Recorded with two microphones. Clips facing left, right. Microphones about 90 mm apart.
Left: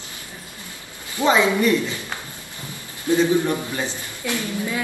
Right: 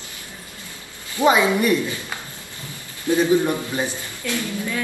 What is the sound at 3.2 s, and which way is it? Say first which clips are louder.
Speech: right 2 dB; 20° right (ahead or behind).